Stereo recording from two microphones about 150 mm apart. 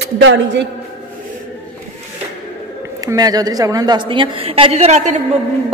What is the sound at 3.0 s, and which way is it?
A woman's voice, 25° right (ahead or behind).